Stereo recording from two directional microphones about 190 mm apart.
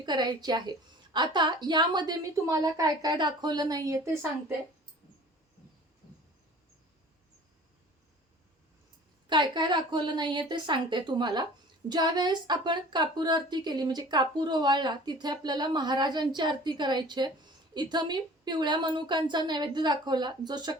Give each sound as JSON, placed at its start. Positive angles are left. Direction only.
{"t": 0.0, "sound": "a woman's voice", "side_deg": -20}
{"t": 9.3, "sound": "a woman's voice", "side_deg": -25}